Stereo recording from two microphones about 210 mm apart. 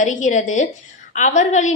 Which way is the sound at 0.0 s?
35° left (ahead or behind).